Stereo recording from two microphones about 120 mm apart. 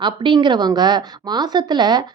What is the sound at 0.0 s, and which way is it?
A woman's voice, 40° right (ahead or behind).